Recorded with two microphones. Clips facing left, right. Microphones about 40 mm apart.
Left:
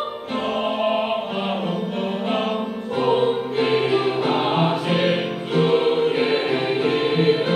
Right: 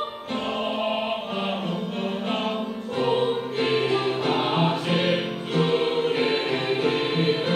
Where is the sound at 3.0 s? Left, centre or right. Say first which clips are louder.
Left 4 dB; centre.